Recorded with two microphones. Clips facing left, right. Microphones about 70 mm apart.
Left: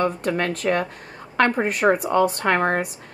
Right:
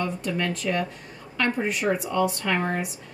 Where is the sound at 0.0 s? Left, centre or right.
Left.